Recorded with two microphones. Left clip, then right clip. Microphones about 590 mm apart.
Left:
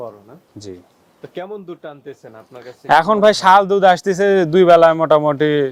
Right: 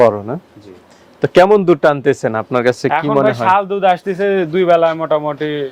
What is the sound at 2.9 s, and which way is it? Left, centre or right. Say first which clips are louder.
Speech: left 2 dB; left.